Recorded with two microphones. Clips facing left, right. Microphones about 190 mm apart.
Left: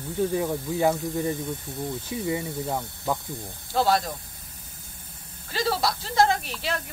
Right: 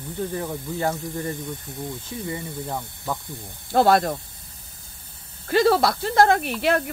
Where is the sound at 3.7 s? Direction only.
55° right (ahead or behind).